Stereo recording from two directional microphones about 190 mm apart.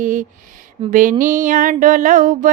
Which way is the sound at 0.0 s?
45° right (ahead or behind).